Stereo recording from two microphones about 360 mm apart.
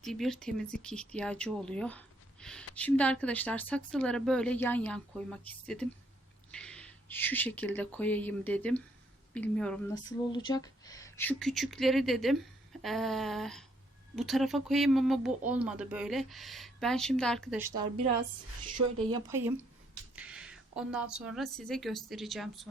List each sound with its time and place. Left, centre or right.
0.0 s speech: centre
17.7 s a woman's voice: centre
20.1 s speech: centre